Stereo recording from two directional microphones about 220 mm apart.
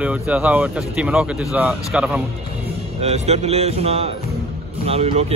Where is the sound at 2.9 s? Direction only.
30° right (ahead or behind).